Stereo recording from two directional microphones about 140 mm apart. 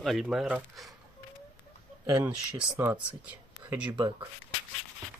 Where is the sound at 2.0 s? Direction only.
25° right (ahead or behind).